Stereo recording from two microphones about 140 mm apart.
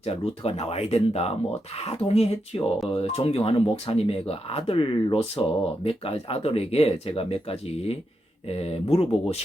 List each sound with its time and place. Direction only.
0.0 s speech: 45° left (ahead or behind)
8.5 s speech: 45° left (ahead or behind)